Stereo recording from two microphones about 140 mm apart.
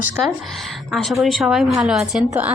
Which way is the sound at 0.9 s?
Centre (ahead or behind).